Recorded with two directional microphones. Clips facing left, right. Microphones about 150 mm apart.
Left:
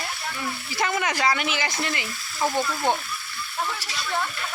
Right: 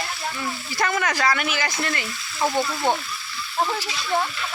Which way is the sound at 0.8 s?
15° left (ahead or behind).